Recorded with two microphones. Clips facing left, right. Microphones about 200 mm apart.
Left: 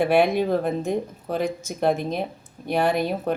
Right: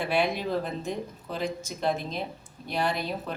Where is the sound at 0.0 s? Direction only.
55° left (ahead or behind).